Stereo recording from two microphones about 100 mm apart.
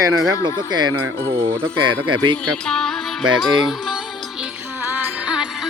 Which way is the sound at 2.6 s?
5° left (ahead or behind).